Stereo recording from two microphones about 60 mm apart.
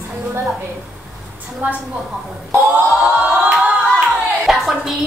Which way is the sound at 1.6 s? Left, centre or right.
Right.